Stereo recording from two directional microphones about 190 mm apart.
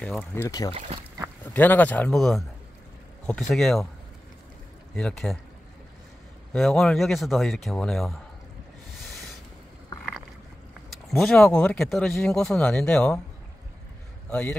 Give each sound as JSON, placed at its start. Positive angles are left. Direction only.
{"t": 0.0, "sound": "speech", "side_deg": 5}
{"t": 0.7, "sound": "speech", "side_deg": -35}
{"t": 1.5, "sound": "speech", "side_deg": 10}
{"t": 4.9, "sound": "speech", "side_deg": 0}
{"t": 6.5, "sound": "speech", "side_deg": 5}
{"t": 10.9, "sound": "speech", "side_deg": 0}
{"t": 14.3, "sound": "speech", "side_deg": 5}